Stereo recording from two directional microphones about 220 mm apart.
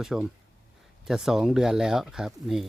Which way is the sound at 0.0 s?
Centre (ahead or behind).